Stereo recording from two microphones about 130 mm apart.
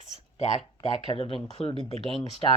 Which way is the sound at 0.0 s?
60° left (ahead or behind).